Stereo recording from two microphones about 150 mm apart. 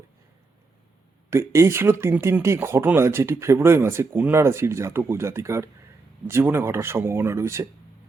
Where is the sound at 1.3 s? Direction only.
20° right (ahead or behind).